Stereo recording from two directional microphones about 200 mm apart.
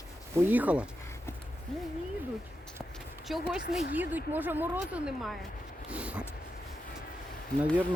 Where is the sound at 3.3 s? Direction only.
Centre (ahead or behind).